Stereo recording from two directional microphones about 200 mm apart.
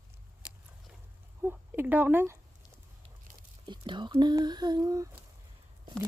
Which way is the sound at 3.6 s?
25° right (ahead or behind).